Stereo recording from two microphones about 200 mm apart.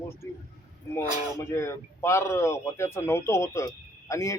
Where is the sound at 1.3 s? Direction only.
15° left (ahead or behind).